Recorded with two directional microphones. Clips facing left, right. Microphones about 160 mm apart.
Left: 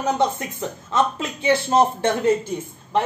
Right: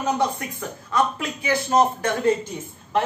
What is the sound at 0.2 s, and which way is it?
A man's voice, 25° left (ahead or behind).